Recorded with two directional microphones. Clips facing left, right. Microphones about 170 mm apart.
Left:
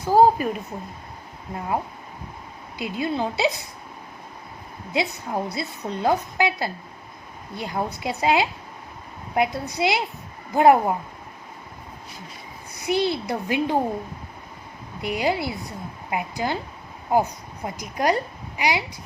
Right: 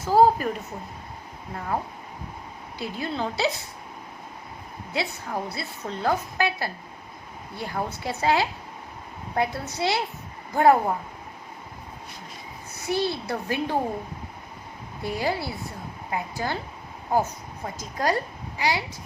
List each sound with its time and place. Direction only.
0.0 s a woman's voice: 15° left (ahead or behind)
2.7 s a woman's voice: 15° left (ahead or behind)
4.9 s a woman's voice: 15° left (ahead or behind)
12.7 s a woman's voice: 15° left (ahead or behind)
15.0 s a woman's voice: 15° left (ahead or behind)